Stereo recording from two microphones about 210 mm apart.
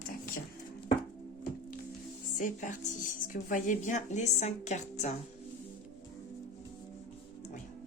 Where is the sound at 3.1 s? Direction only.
40° left (ahead or behind).